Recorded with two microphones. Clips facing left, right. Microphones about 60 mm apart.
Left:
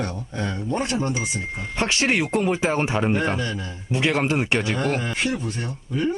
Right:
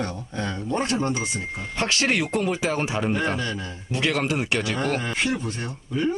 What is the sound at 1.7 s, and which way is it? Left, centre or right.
Speech, left.